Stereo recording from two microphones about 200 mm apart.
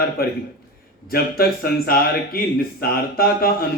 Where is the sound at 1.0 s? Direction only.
50° left (ahead or behind).